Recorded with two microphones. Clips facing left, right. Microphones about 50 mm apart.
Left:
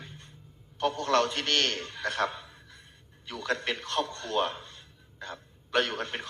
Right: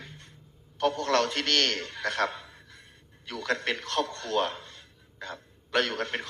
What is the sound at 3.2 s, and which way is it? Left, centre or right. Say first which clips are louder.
A man's voice: right 1 dB; left.